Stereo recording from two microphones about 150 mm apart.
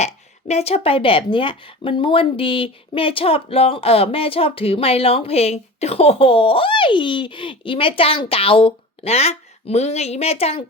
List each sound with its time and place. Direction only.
0.0 s speech: 45° left (ahead or behind)